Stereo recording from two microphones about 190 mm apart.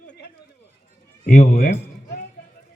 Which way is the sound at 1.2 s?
40° left (ahead or behind).